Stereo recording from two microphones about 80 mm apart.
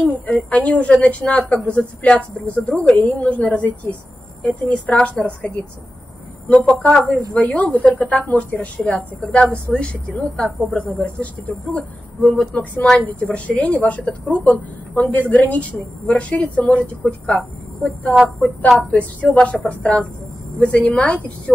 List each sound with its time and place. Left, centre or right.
0.0 s a woman's voice: centre
6.8 s a woman's voice: centre
18.8 s a woman's voice: centre